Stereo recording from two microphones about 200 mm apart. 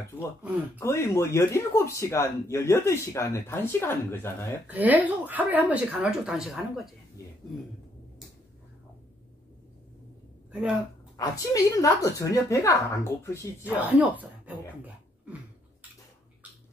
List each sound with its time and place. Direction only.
0.7 s speech: 15° left (ahead or behind)
4.6 s a woman's voice: 10° right (ahead or behind)
10.5 s speech: 5° right (ahead or behind)
11.1 s speech: 15° left (ahead or behind)
13.7 s speech: 10° right (ahead or behind)